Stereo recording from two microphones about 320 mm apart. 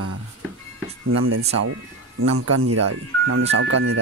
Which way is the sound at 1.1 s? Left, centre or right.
Right.